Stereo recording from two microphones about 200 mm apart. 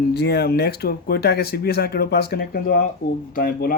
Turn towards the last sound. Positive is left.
turn(degrees=45)  # may be behind; listen again after turning